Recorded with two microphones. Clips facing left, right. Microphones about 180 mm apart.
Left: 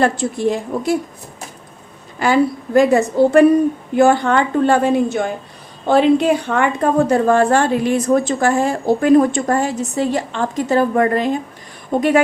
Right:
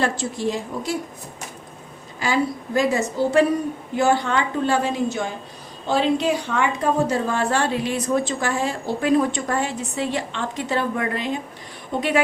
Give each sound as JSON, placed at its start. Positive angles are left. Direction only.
{"t": 0.0, "sound": "a woman's voice", "side_deg": 55}
{"t": 2.1, "sound": "a woman's voice", "side_deg": 60}